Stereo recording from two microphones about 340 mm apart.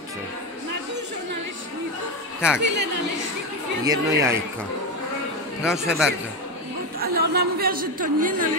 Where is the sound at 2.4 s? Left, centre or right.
Centre.